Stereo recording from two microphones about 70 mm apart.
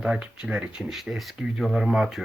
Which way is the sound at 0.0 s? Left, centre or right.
Centre.